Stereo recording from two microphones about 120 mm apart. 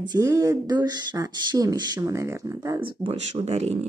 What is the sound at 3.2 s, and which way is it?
Speech, 65° right (ahead or behind).